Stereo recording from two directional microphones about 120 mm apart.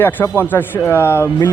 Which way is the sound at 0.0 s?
15° left (ahead or behind).